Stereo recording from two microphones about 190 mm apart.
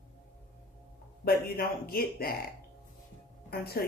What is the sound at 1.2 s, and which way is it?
Speech, 50° left (ahead or behind).